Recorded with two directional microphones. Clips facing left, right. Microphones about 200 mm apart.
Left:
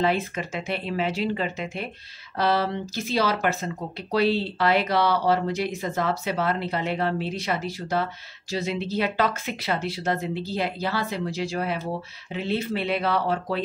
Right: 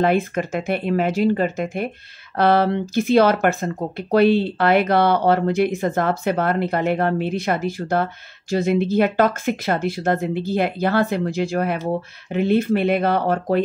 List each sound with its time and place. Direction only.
0.0 s speech: 55° right (ahead or behind)